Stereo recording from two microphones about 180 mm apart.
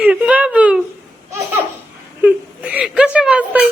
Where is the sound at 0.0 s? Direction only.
10° right (ahead or behind).